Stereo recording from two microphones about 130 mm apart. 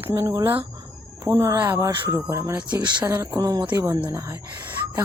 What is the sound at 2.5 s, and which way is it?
Speech, 10° right (ahead or behind).